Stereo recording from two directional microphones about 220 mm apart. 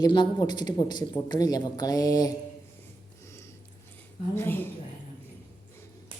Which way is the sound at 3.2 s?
10° left (ahead or behind).